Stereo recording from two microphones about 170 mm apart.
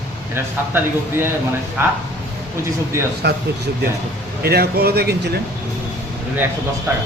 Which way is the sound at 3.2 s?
75° right (ahead or behind).